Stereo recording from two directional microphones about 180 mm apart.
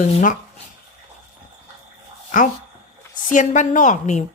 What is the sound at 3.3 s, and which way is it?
Speech, 45° left (ahead or behind).